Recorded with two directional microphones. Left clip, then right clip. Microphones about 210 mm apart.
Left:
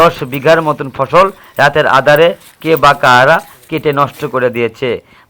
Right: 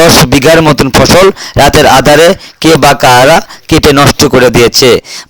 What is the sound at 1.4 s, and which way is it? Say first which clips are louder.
Speech: right 5 dB; 55° right (ahead or behind).